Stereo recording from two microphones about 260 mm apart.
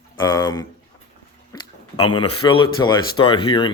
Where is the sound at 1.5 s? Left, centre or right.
Centre.